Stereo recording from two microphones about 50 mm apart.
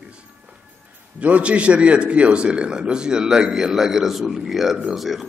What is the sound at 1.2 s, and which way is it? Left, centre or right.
A man's voice, right.